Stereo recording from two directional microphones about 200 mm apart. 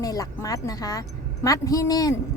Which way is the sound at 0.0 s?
20° left (ahead or behind).